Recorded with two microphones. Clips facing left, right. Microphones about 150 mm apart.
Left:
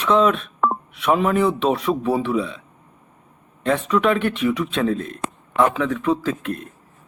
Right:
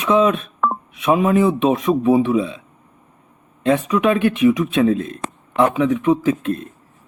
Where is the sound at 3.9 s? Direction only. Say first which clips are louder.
Right 2 dB; 20° right (ahead or behind).